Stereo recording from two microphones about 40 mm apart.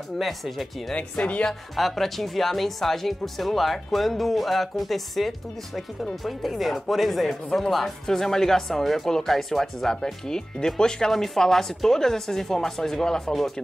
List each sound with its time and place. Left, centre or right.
0.2 s speech: centre
0.9 s speech: left
1.8 s speech: centre